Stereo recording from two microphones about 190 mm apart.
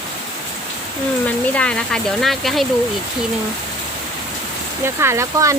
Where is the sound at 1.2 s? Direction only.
5° left (ahead or behind).